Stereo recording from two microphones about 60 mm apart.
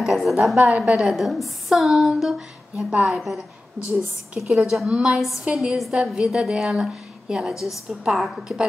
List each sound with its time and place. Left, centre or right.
0.0 s a woman's voice: centre
0.7 s a woman's voice: right
0.9 s a woman's voice: centre